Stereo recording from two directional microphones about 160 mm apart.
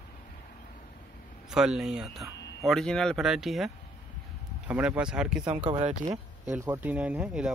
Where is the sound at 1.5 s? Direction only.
5° right (ahead or behind).